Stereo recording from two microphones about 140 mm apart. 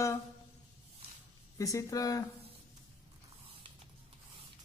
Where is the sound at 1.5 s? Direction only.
25° left (ahead or behind).